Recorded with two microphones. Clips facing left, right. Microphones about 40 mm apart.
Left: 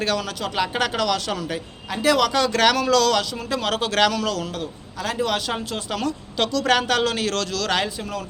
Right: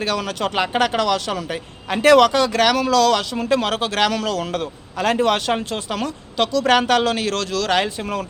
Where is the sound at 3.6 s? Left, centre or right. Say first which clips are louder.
Right 1 dB; right.